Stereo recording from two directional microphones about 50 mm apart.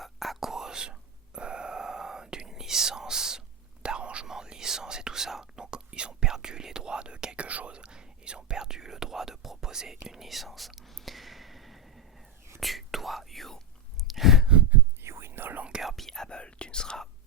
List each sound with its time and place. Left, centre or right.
0.0 s whispering: centre
14.1 s sigh: centre
15.0 s whispering: right
15.8 s whispering: centre
16.0 s whispering: centre